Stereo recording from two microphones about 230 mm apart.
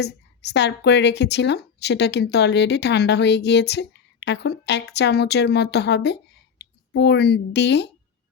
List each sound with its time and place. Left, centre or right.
0.0 s speech: left